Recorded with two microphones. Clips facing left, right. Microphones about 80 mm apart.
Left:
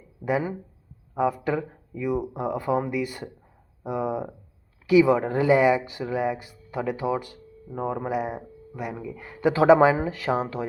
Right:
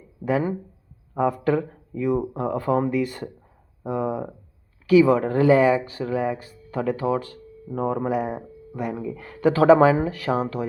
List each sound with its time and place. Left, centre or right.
0.3 s speech: centre
9.1 s speech: centre